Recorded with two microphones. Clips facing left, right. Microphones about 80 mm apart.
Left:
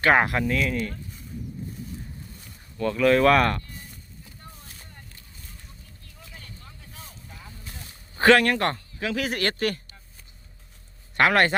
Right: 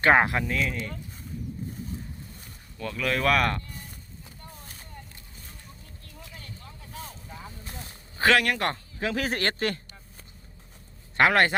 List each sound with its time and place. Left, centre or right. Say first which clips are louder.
0.0 s speech: even; centre
2.7 s speech: left 9 dB; centre
8.2 s speech: left 4 dB; centre
9.0 s speech: even; right
11.2 s speech: left 1 dB; centre